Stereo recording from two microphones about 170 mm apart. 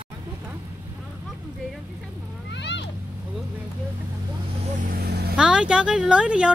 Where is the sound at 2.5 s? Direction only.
90° left.